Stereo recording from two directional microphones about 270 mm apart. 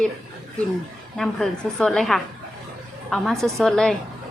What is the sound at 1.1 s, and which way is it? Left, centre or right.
A woman's voice, centre.